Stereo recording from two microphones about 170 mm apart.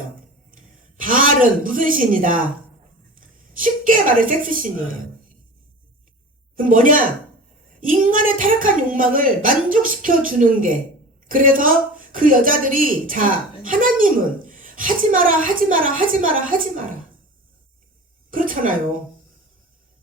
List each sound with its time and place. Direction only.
0.5 s a man's voice: 50° right (ahead or behind)
6.6 s a woman's voice: 55° right (ahead or behind)
18.3 s speech: 55° right (ahead or behind)